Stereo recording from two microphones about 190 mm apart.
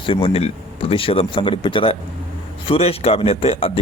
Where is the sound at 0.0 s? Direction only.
30° left (ahead or behind).